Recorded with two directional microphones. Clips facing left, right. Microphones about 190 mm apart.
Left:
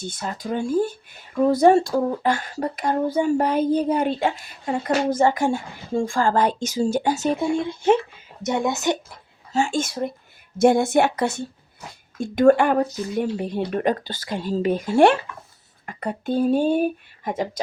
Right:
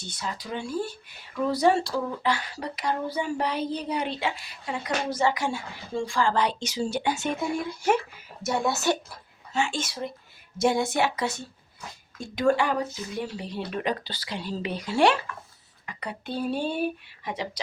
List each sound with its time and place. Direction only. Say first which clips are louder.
0.0 s a woman's voice: left 6 dB; 50° left (ahead or behind); by 9.0 s 15° left (ahead or behind)
9.5 s speech: left 6 dB; 40° left (ahead or behind)